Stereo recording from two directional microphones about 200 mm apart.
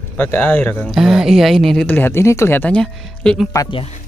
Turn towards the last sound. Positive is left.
turn(degrees=15)  # may be behind; listen again after turning